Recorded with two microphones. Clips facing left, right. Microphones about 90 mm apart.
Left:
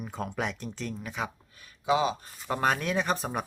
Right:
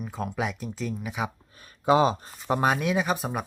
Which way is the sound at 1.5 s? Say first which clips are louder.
Right 5 dB; 40° right (ahead or behind).